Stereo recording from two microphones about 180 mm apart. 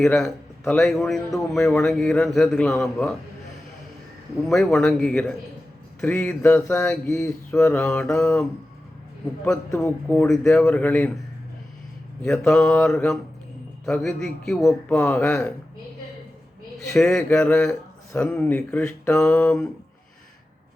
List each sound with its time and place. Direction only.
0.0 s mantra: centre (ahead or behind)
4.4 s mantra: centre (ahead or behind)
12.2 s mantra: 5° left (ahead or behind)
14.7 s speech: 10° left (ahead or behind)
16.9 s speech: 5° left (ahead or behind)